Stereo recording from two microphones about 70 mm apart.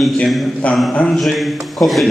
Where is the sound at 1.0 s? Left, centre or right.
Centre.